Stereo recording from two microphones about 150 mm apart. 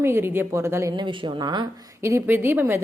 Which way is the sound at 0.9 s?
30° right (ahead or behind).